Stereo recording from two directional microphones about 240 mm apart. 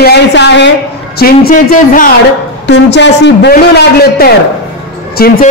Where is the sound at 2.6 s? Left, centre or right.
Left.